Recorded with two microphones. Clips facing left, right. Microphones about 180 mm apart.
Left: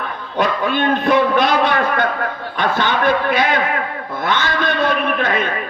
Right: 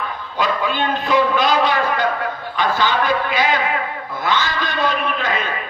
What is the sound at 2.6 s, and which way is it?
A man's voice, 60° left (ahead or behind).